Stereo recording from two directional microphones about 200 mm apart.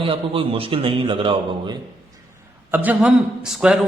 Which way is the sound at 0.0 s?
25° right (ahead or behind).